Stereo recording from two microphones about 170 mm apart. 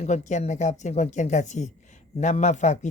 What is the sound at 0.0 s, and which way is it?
A woman's voice, 45° left (ahead or behind).